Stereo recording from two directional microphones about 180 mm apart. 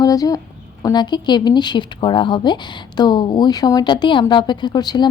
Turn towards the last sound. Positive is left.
turn(degrees=25)  # may be behind; listen again after turning